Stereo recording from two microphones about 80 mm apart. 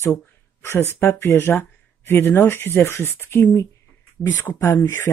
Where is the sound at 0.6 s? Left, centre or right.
Left.